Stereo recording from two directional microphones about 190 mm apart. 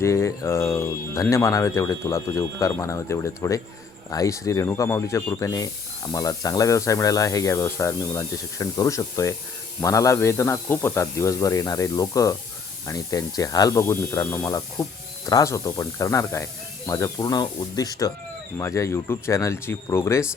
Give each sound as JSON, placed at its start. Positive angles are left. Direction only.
{"t": 0.0, "sound": "speech", "side_deg": 15}